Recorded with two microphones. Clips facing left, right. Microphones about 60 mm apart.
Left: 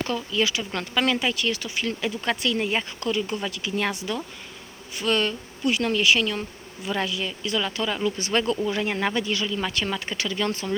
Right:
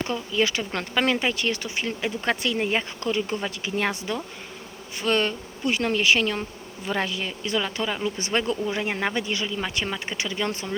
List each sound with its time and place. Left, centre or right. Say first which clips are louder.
0.3 s speech: right 2 dB; right